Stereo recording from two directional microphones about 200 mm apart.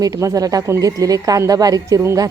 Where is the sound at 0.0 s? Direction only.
15° right (ahead or behind).